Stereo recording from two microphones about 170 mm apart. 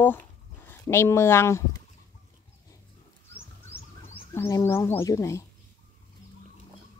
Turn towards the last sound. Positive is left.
turn(degrees=15)  # may be behind; listen again after turning